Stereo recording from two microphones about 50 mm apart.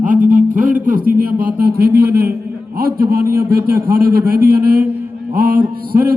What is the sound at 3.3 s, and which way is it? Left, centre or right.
A man's voice, right.